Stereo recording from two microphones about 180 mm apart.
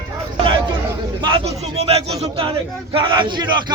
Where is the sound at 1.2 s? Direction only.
30° right (ahead or behind).